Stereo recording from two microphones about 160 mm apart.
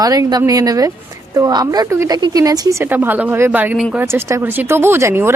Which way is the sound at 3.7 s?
Centre (ahead or behind).